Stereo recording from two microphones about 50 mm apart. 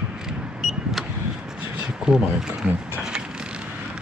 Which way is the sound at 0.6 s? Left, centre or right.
Centre.